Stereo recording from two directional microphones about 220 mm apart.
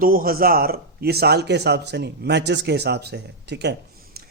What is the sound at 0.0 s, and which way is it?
A man's voice, 40° right (ahead or behind).